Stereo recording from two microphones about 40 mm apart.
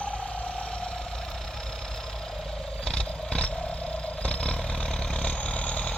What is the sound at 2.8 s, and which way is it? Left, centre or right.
Vehicle, left.